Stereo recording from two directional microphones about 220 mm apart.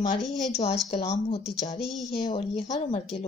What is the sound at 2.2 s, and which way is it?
Speech, 25° left (ahead or behind).